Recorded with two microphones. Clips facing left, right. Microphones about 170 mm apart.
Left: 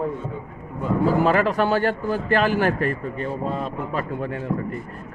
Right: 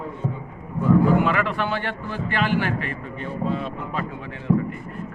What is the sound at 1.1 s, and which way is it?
A man's voice, 35° left (ahead or behind).